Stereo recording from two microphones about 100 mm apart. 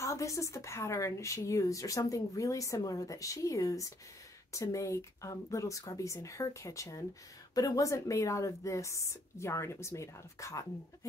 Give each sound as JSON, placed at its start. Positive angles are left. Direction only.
{"t": 0.0, "sound": "a woman's voice", "side_deg": 30}